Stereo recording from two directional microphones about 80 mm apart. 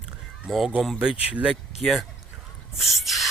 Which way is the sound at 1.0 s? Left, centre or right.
Centre.